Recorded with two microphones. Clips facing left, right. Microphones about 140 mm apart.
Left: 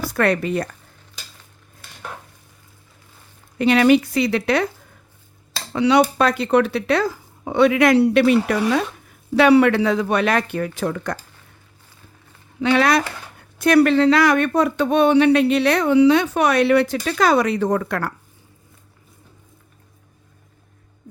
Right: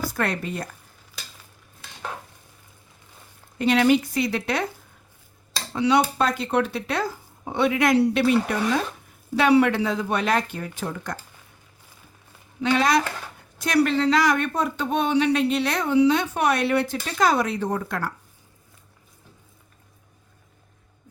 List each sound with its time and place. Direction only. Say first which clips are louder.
0.0 s speech: left 7 dB; 70° left (ahead or behind)
3.6 s speech: left 4 dB; 70° left (ahead or behind)
5.7 s speech: left 5 dB; 75° left (ahead or behind)
12.6 s speech: left 3 dB; 65° left (ahead or behind)